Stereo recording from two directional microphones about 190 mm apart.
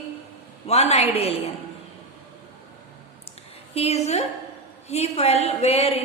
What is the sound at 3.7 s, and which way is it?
A woman's voice, 35° left (ahead or behind).